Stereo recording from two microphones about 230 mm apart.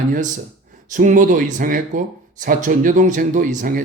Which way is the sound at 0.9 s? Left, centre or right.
Right.